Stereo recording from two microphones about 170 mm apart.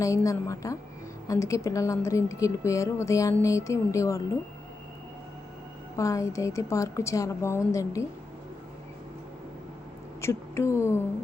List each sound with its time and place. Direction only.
0.0 s a woman's voice: 20° left (ahead or behind)
6.0 s a woman's voice: 20° left (ahead or behind)
10.2 s speech: 15° left (ahead or behind)